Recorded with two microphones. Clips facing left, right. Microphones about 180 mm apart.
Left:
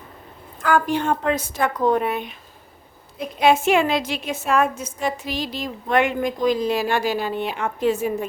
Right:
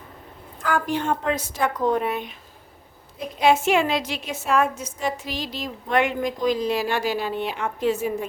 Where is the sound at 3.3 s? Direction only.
55° left (ahead or behind).